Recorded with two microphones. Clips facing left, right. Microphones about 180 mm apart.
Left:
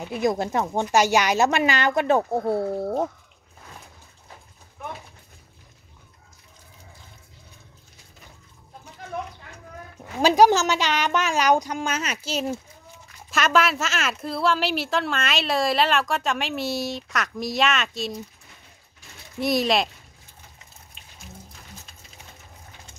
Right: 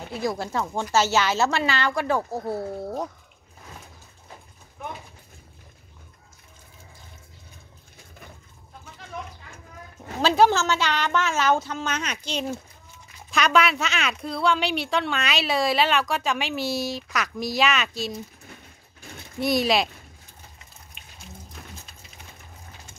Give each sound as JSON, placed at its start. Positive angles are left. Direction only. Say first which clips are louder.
{"t": 0.1, "sound": "speech", "louder": "left 4 dB", "side_deg": 20}
{"t": 10.2, "sound": "a woman's voice", "louder": "left 2 dB", "side_deg": 15}
{"t": 19.4, "sound": "a woman's voice", "louder": "even", "side_deg": 0}
{"t": 21.0, "sound": "a sound", "louder": "right 1 dB", "side_deg": 35}